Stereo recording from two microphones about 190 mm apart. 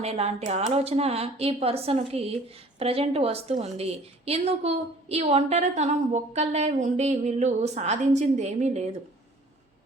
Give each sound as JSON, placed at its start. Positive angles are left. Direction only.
{"t": 0.0, "sound": "a woman's voice", "side_deg": -35}